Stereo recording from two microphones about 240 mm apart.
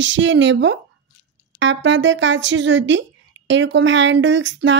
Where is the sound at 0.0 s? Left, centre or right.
Right.